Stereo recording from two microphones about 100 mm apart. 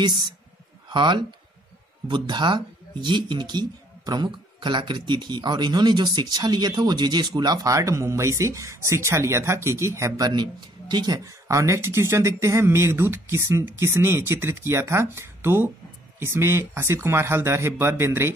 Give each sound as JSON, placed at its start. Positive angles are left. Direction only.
{"t": 0.0, "sound": "speech", "side_deg": -50}
{"t": 10.3, "sound": "speech", "side_deg": -45}